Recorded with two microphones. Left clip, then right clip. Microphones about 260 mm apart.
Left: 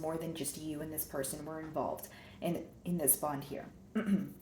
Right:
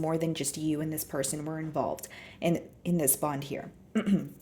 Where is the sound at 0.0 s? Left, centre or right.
Right.